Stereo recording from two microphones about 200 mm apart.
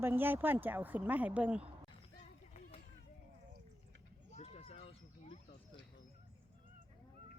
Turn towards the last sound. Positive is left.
turn(degrees=30)  # may be behind; listen again after turning